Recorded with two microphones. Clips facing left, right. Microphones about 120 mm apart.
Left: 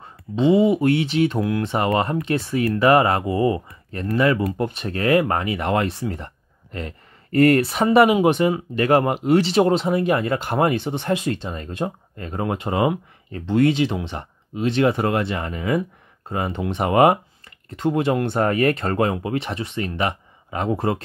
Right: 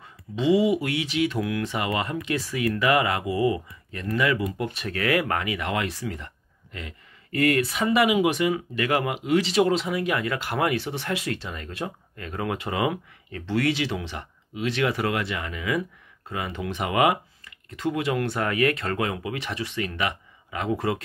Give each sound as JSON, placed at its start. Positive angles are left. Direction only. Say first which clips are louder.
{"t": 0.0, "sound": "speech", "louder": "left 6 dB", "side_deg": 25}
{"t": 6.1, "sound": "a sound", "louder": "left 5 dB", "side_deg": 45}
{"t": 8.1, "sound": "speech", "louder": "left 4 dB", "side_deg": 35}